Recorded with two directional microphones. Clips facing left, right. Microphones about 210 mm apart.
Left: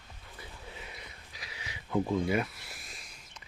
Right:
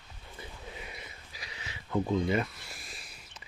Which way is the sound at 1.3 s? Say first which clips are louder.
Right 1 dB; centre (ahead or behind).